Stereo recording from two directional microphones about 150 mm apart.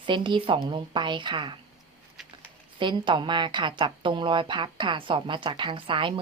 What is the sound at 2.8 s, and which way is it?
A woman's voice, 30° right (ahead or behind).